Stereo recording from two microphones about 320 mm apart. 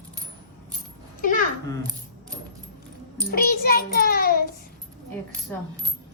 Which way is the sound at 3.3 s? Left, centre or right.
Left.